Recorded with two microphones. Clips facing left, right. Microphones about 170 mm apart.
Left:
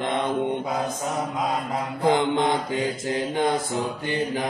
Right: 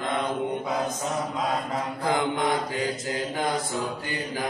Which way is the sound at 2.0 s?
25° left (ahead or behind).